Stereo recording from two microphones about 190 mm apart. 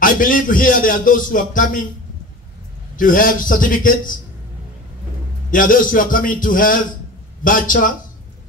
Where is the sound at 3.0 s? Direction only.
45° left (ahead or behind).